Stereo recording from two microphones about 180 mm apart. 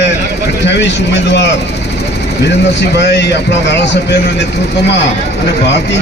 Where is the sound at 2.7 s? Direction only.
70° left (ahead or behind).